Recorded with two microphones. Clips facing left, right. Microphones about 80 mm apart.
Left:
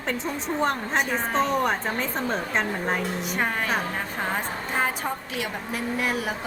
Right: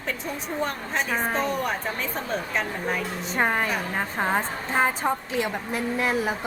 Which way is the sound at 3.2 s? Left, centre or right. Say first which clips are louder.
Right 5 dB; right.